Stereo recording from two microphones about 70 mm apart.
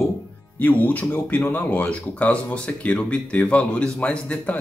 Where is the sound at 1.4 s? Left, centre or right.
Left.